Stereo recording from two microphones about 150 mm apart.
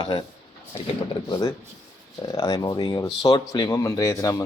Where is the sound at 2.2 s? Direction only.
25° left (ahead or behind).